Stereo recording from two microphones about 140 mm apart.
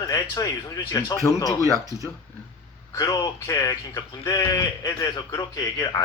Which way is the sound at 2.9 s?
25° left (ahead or behind).